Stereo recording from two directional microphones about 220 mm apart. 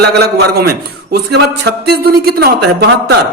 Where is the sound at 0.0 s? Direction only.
50° right (ahead or behind).